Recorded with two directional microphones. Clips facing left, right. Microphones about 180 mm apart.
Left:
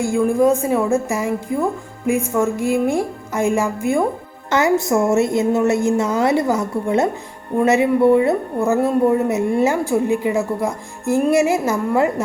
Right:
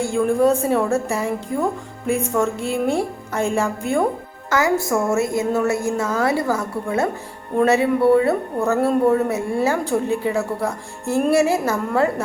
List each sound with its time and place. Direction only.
0.0 s a woman's voice: 10° left (ahead or behind)
4.4 s a woman's voice: 25° left (ahead or behind)